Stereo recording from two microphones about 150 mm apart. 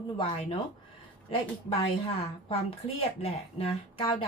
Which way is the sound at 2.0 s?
40° left (ahead or behind).